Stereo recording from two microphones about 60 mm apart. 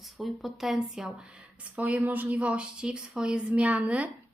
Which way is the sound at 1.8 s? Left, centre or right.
Right.